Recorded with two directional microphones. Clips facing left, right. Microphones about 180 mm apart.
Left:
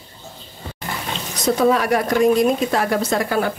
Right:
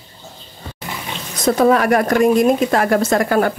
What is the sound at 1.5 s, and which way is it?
A woman's voice, 55° right (ahead or behind).